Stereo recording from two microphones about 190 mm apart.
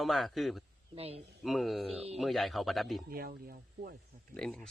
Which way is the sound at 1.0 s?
30° right (ahead or behind).